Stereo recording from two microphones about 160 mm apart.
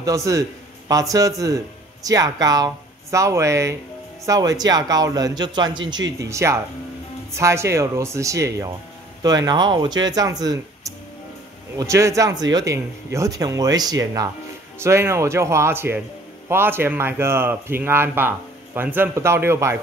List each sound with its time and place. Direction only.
0.0 s a man's voice: 20° right (ahead or behind)